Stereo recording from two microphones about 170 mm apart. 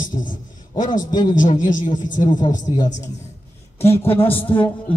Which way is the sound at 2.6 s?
25° left (ahead or behind).